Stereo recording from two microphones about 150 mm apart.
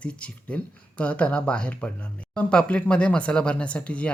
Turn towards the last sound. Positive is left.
turn(degrees=10)  # may be behind; listen again after turning